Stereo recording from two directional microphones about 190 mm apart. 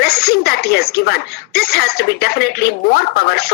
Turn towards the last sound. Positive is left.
turn(degrees=55)  # may be behind; listen again after turning